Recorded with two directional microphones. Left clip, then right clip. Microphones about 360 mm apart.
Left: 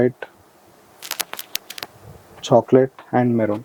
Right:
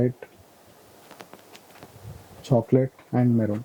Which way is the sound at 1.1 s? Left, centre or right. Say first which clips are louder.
Left 18 dB; centre.